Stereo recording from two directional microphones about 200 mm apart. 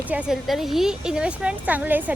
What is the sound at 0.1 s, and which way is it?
A woman's voice, 5° right (ahead or behind).